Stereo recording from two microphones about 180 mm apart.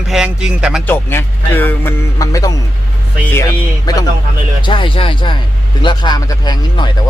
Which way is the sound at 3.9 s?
20° left (ahead or behind).